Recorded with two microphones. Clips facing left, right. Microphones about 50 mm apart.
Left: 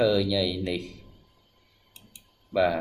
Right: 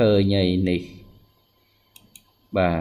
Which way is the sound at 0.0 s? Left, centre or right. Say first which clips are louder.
Right 5 dB; right.